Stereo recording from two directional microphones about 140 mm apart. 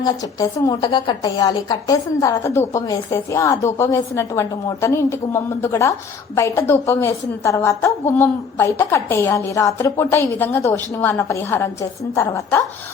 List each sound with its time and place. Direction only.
0.0 s a woman's voice: 25° left (ahead or behind)